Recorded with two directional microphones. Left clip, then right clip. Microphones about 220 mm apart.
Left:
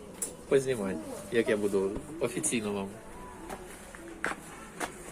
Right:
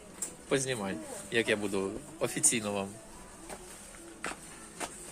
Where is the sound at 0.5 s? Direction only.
40° right (ahead or behind).